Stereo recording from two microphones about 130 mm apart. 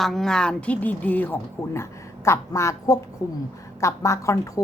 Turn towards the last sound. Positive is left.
turn(degrees=25)  # may be behind; listen again after turning